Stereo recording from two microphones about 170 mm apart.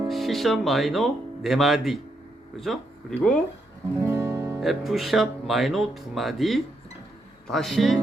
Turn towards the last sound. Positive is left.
turn(degrees=0)  # may be behind; listen again after turning